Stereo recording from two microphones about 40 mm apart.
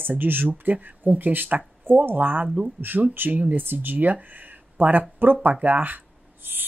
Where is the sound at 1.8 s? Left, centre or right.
Right.